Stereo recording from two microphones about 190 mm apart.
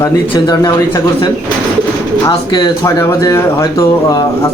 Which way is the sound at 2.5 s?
20° left (ahead or behind).